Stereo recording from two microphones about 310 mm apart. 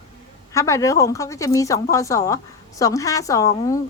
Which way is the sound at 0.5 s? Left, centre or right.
Centre.